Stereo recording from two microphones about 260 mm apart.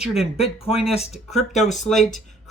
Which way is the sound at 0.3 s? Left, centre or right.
Left.